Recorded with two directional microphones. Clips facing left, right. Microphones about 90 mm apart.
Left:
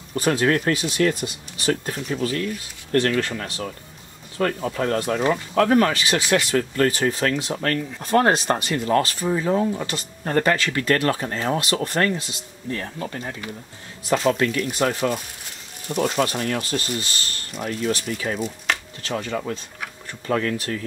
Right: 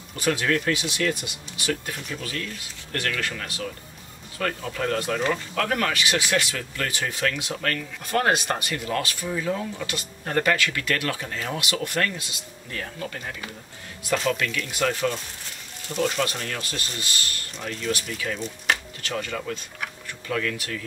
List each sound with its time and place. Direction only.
0.1 s speech: 40° left (ahead or behind)
15.9 s speech: 55° left (ahead or behind)
16.7 s speech: 35° left (ahead or behind)